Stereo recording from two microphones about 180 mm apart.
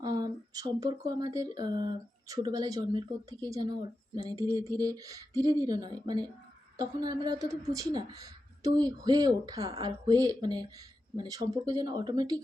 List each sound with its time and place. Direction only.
0.0 s speech: 20° right (ahead or behind)